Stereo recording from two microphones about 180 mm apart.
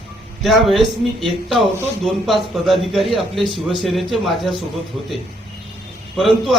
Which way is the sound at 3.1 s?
30° right (ahead or behind).